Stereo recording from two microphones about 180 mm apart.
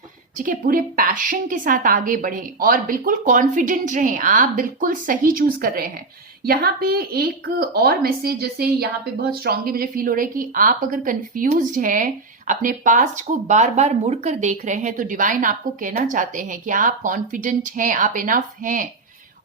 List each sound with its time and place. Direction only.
0.3 s a woman's voice: 50° right (ahead or behind)